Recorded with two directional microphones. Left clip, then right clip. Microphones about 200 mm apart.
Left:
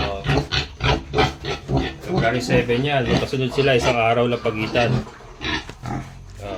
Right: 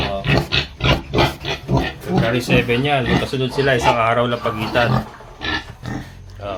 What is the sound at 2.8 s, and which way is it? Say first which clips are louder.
Speech: right 2 dB; 5° right (ahead or behind).